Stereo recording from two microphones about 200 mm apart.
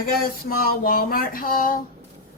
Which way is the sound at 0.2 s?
45° left (ahead or behind).